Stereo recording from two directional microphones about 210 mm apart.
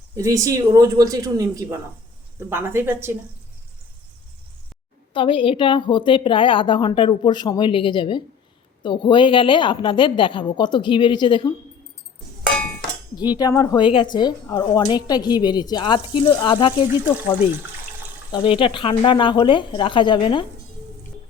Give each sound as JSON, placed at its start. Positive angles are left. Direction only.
{"t": 0.2, "sound": "speech", "side_deg": -15}
{"t": 5.1, "sound": "speech", "side_deg": 25}
{"t": 13.1, "sound": "speech", "side_deg": 20}
{"t": 18.3, "sound": "speech", "side_deg": 25}